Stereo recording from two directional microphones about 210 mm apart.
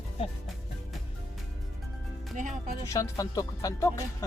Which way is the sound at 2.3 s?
40° right (ahead or behind).